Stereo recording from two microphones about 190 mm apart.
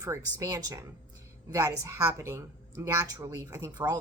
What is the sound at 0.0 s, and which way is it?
Speech, 15° right (ahead or behind).